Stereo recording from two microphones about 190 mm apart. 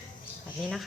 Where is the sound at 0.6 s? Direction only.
Centre (ahead or behind).